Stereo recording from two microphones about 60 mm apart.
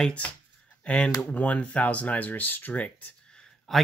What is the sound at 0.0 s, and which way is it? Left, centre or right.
Speech, left.